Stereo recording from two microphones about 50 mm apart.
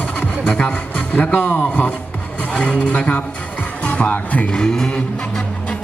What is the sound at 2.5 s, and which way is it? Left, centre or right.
Speech, left.